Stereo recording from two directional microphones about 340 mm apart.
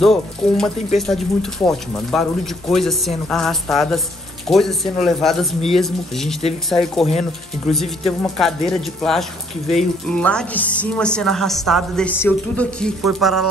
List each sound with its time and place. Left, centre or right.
0.0 s a woman's voice: centre
7.1 s speech: centre
7.7 s a woman's voice: centre